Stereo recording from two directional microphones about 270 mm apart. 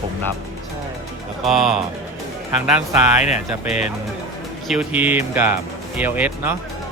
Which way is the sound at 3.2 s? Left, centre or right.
Left.